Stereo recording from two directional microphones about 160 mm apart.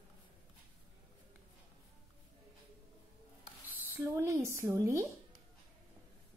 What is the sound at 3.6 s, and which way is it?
Speech, 10° right (ahead or behind).